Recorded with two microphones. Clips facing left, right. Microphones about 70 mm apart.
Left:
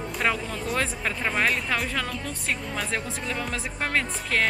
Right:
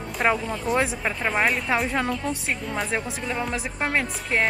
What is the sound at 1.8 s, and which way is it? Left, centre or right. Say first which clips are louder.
Speech: right 5 dB; right.